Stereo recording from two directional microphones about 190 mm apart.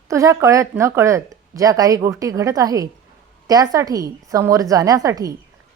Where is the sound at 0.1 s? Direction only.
15° right (ahead or behind).